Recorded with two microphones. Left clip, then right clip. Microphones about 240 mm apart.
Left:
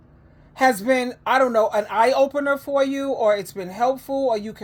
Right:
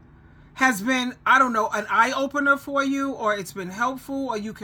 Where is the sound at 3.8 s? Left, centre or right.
Right.